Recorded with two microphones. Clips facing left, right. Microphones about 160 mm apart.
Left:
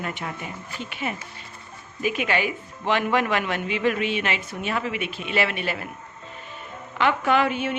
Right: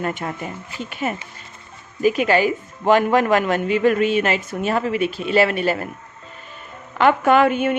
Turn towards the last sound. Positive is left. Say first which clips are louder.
# right 6 dB
turn(degrees=-50)  # may be behind; listen again after turning